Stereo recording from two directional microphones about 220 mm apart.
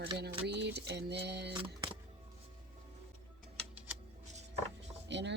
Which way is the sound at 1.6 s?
20° right (ahead or behind).